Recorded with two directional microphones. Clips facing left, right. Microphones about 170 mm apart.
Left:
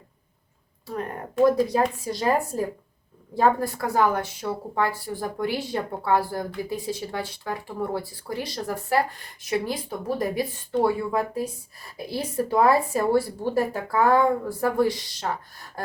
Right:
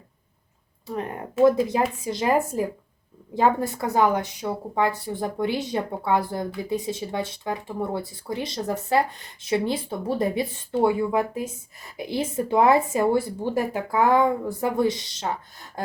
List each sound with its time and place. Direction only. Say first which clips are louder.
1.5 s a woman's voice: right 1 dB; 20° right (ahead or behind)